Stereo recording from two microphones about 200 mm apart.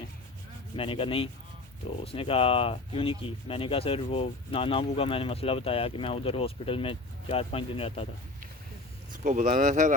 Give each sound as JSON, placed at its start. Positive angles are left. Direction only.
{"t": 0.8, "sound": "speech", "side_deg": 25}
{"t": 9.1, "sound": "speech", "side_deg": -40}